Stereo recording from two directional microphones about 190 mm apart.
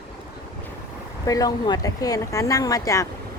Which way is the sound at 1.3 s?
20° left (ahead or behind).